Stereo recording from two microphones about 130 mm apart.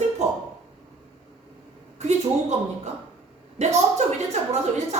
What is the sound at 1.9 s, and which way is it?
Speech, 60° right (ahead or behind).